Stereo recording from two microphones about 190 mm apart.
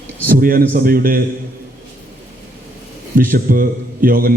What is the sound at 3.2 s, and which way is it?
Speech, 50° right (ahead or behind).